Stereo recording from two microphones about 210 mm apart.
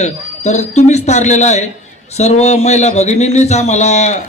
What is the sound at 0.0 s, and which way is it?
A man's voice, 35° left (ahead or behind).